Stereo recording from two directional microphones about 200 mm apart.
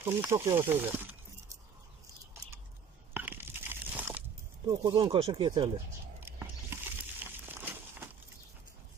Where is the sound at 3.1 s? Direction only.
10° right (ahead or behind).